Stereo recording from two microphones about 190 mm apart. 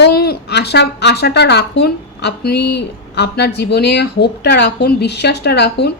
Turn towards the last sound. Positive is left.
turn(degrees=60)  # may be behind; listen again after turning